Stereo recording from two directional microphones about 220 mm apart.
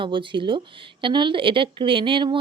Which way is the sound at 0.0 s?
20° right (ahead or behind).